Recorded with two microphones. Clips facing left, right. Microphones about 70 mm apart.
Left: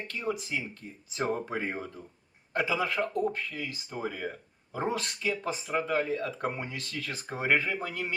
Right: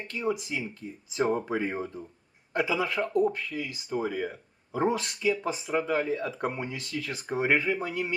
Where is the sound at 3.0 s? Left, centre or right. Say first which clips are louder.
Right 4 dB; centre.